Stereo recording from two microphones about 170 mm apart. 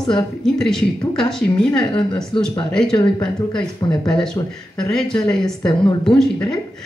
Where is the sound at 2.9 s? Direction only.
25° left (ahead or behind).